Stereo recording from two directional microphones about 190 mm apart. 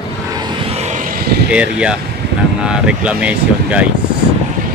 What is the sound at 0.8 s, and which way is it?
Vehicle, 40° right (ahead or behind).